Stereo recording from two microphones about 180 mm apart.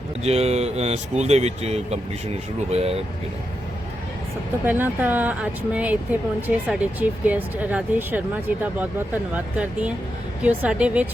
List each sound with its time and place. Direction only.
0.2 s speech: 35° right (ahead or behind)
4.6 s speech: 10° right (ahead or behind)